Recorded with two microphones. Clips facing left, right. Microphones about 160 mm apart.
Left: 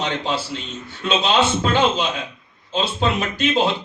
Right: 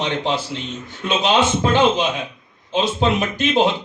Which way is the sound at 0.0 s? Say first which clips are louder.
Right 2 dB; 15° right (ahead or behind).